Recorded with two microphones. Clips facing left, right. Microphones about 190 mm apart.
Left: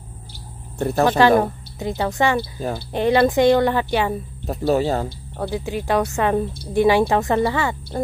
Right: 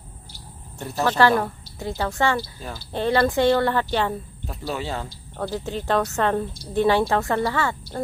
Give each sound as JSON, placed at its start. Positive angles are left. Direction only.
{"t": 0.7, "sound": "speech", "side_deg": 55}
{"t": 1.0, "sound": "a woman's voice", "side_deg": 15}
{"t": 4.5, "sound": "speech", "side_deg": 40}
{"t": 5.4, "sound": "a woman's voice", "side_deg": 10}